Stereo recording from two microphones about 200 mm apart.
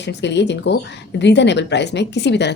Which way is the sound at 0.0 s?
60° left (ahead or behind).